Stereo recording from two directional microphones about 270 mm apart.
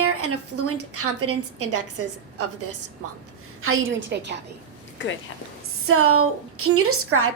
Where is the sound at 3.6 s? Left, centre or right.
Right.